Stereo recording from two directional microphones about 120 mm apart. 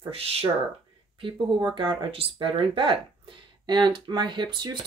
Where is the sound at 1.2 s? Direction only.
40° right (ahead or behind).